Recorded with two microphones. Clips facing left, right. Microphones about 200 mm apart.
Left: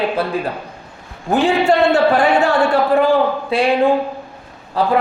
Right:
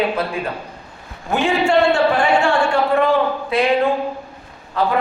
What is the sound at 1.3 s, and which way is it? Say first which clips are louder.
Speech: left 2 dB; 35° left (ahead or behind).